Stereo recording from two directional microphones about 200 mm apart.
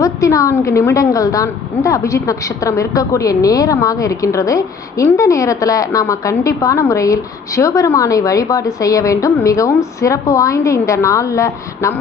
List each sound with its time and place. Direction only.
0.0 s a woman's voice: 15° left (ahead or behind)